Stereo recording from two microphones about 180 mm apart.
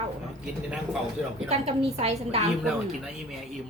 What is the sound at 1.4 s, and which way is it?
Speech, 35° right (ahead or behind).